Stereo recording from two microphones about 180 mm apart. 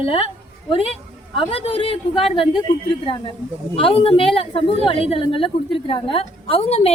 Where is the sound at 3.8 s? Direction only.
30° left (ahead or behind).